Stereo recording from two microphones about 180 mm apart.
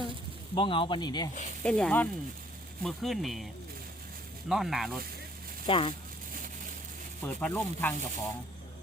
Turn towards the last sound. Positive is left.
turn(degrees=10)  # may be behind; listen again after turning